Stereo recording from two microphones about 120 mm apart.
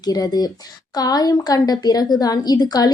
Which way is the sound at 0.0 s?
35° left (ahead or behind).